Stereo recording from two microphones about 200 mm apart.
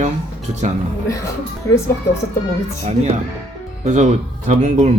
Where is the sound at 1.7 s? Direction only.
15° left (ahead or behind).